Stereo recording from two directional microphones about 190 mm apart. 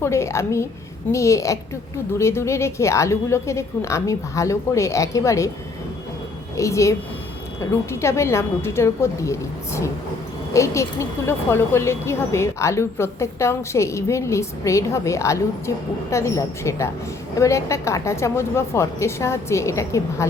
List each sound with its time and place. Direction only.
0.0 s a woman's voice: 15° left (ahead or behind)
6.6 s a woman's voice: 15° left (ahead or behind)